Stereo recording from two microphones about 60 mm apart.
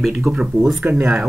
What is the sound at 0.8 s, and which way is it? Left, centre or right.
Speech, right.